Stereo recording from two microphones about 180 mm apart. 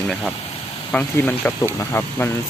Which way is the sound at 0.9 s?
10° left (ahead or behind).